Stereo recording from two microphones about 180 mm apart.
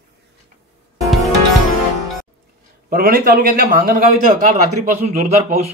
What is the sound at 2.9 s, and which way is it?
A man's voice, 55° right (ahead or behind).